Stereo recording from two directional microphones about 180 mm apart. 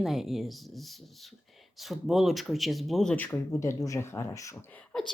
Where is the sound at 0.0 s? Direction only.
Centre (ahead or behind); by 4.8 s 15° left (ahead or behind).